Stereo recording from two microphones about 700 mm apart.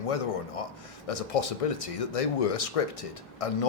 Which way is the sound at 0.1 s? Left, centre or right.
Left.